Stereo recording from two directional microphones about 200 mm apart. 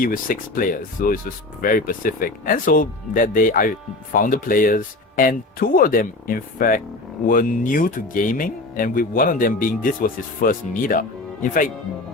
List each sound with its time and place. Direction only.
0.0 s speech: 45° left (ahead or behind)